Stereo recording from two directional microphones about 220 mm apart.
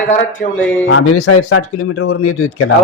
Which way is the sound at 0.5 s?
5° left (ahead or behind).